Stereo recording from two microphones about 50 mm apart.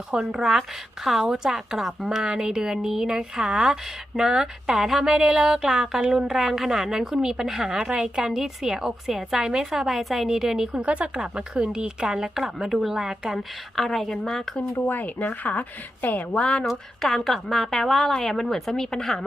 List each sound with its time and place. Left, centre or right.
0.1 s a woman's voice: centre
2.2 s a woman's voice: centre
5.0 s speech: right
5.6 s a woman's voice: centre
10.7 s a woman's voice: right; by 13.4 s centre
13.7 s a woman's voice: centre
14.8 s a woman's voice: left
16.4 s speech: centre
17.0 s a woman's voice: centre